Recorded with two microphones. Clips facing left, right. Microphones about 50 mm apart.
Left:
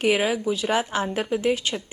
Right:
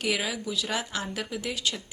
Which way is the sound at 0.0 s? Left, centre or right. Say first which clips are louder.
Left 8 dB; left.